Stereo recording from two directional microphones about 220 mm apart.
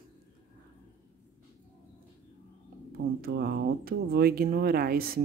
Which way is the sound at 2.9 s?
45° right (ahead or behind).